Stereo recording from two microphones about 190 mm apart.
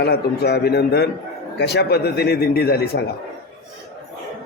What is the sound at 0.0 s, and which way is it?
A man's voice, 60° left (ahead or behind).